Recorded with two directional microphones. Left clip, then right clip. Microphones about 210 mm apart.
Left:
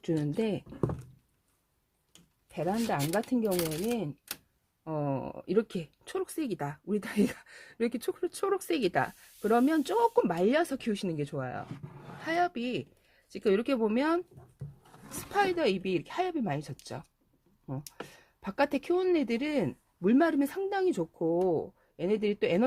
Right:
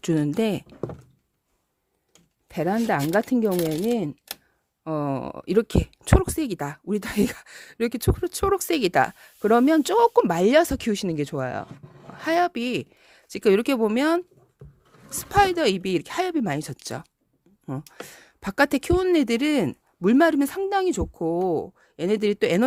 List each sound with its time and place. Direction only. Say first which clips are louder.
0.0 s speech: right 8 dB; 45° right (ahead or behind)
2.5 s speech: right 8 dB; 55° right (ahead or behind)
18.1 s speech: right 8 dB; 45° right (ahead or behind)